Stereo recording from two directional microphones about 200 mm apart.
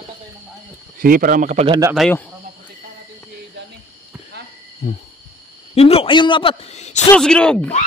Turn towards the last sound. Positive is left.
turn(degrees=5)  # may be behind; listen again after turning